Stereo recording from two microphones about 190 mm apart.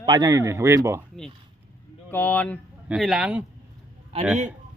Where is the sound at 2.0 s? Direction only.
10° left (ahead or behind).